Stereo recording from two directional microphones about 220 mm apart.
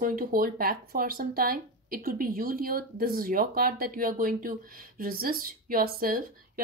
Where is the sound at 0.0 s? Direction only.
40° right (ahead or behind).